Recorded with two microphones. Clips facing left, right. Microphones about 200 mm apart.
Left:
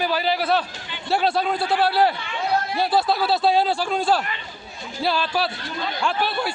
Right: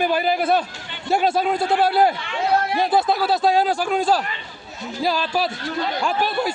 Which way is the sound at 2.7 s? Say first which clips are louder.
Right 2 dB; 20° right (ahead or behind).